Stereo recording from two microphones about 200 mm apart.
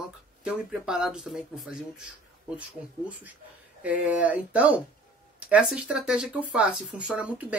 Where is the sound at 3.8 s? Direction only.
5° right (ahead or behind).